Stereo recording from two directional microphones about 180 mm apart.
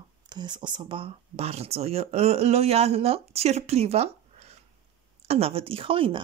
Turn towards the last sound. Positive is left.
turn(degrees=-30)  # may be behind; listen again after turning